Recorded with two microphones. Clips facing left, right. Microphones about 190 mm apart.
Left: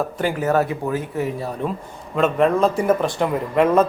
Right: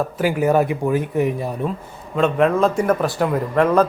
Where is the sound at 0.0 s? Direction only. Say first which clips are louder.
Right 3 dB; 10° right (ahead or behind).